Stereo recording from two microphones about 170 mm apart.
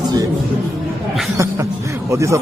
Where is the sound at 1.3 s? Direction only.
15° right (ahead or behind).